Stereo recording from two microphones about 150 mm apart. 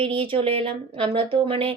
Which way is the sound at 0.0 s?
35° right (ahead or behind).